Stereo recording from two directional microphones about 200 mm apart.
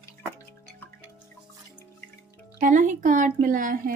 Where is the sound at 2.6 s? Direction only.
40° right (ahead or behind).